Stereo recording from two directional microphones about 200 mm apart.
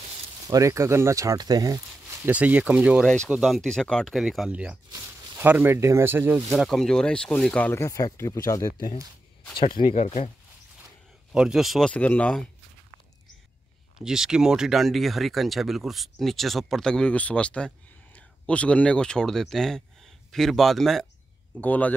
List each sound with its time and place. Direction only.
0.5 s speech: 15° right (ahead or behind)
2.2 s speech: 5° right (ahead or behind); by 8.9 s 20° left (ahead or behind)
9.8 s speech: 30° left (ahead or behind)
11.3 s speech: centre (ahead or behind)
14.0 s speech: 5° right (ahead or behind)